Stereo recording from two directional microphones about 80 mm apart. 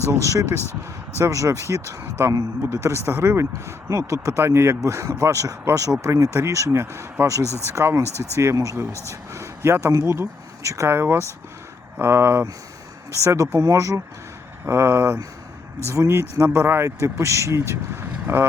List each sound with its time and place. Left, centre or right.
0.1 s speech: right
8.9 s speech: left
9.3 s speech: right